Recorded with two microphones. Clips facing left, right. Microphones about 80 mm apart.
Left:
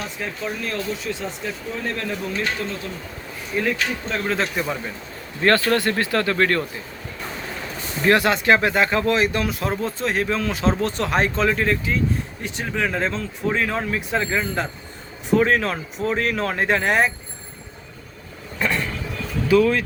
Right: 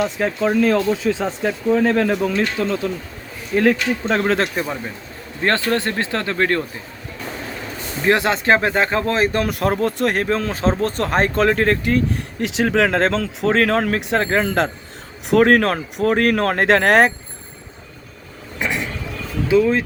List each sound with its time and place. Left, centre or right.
0.0 s speech: right
3.5 s speech: right
4.2 s speech: right
5.4 s speech: right
8.0 s speech: right
9.5 s speech: right
10.2 s speech: right
15.3 s speech: right
18.6 s vehicle: centre
19.5 s speech: right